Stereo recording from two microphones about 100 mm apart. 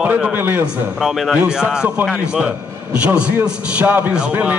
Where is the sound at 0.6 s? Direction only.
5° right (ahead or behind).